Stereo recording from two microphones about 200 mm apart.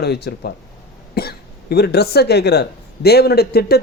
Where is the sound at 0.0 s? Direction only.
55° left (ahead or behind).